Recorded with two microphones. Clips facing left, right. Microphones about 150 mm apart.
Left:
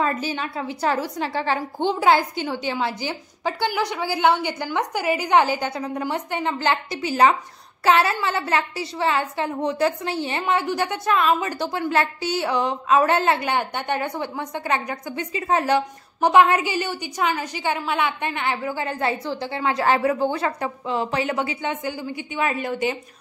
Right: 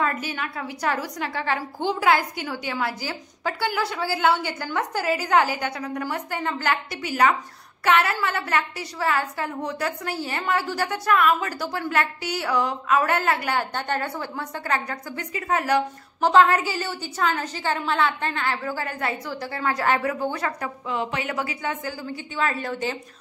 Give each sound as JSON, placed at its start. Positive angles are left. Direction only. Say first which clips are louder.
{"t": 0.0, "sound": "a woman's voice", "louder": "left 3 dB", "side_deg": 30}
{"t": 16.2, "sound": "a woman's voice", "louder": "left 1 dB", "side_deg": 15}